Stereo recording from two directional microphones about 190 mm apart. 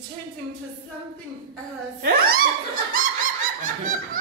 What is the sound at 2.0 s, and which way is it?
Speech, 55° right (ahead or behind).